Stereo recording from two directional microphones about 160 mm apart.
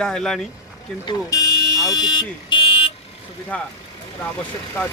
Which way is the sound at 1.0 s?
20° left (ahead or behind).